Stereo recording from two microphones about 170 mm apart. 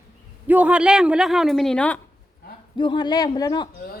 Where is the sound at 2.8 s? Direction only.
25° left (ahead or behind).